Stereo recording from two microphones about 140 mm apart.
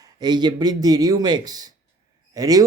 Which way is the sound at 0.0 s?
30° right (ahead or behind).